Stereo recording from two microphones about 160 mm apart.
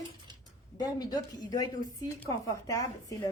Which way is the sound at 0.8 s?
25° left (ahead or behind).